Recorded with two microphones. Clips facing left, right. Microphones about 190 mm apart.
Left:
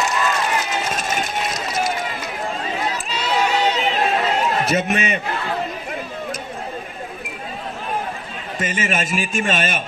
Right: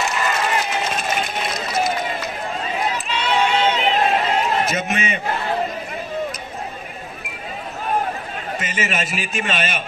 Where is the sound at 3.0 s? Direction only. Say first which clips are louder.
Even; 40° left (ahead or behind).